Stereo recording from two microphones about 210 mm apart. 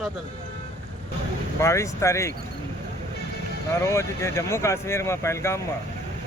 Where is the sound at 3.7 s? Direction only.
15° left (ahead or behind).